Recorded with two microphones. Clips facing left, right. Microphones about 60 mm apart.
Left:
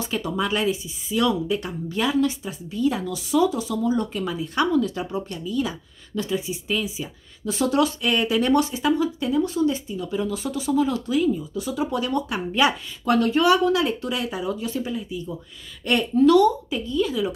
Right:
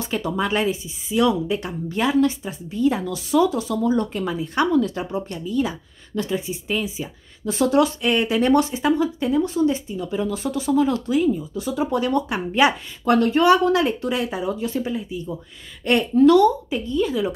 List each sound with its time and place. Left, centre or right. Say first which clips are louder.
0.0 s speech: right 2 dB; right
4.2 s speech: right 2 dB; right
11.1 s speech: right 2 dB; right